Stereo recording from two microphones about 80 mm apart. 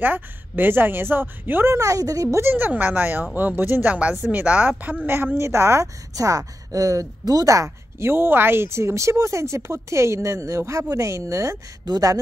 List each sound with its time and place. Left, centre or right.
0.0 s a woman's voice: right
1.8 s speech: right
2.3 s a woman's voice: right
5.0 s a woman's voice: right
11.8 s speech: right